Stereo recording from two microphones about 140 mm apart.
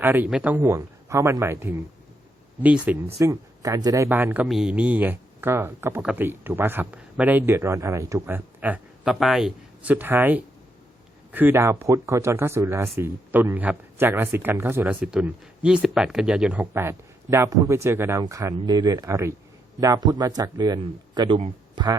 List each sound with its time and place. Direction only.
0.0 s speech: 15° right (ahead or behind)
3.2 s speech: 25° right (ahead or behind)